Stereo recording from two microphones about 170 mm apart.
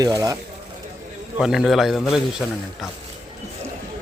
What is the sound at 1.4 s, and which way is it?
A man's voice, 5° right (ahead or behind).